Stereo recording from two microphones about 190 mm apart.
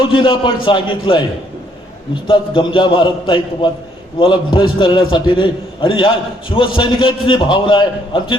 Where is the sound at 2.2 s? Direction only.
25° left (ahead or behind).